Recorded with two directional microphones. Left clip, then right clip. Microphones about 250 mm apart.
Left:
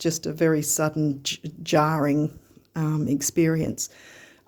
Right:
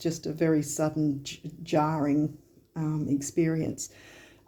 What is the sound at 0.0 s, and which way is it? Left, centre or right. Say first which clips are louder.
Speech: left 5 dB; left.